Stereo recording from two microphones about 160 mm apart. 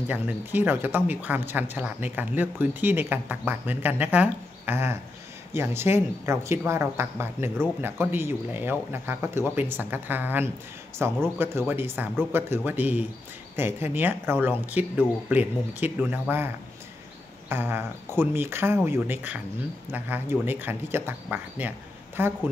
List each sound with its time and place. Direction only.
0.1 s speech: 10° right (ahead or behind)
17.5 s speech: 15° right (ahead or behind)